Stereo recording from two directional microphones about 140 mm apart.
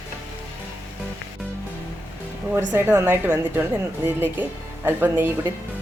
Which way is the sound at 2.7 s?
15° right (ahead or behind).